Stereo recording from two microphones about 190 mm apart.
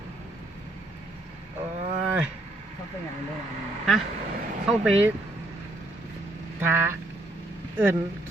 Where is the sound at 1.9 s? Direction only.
5° right (ahead or behind).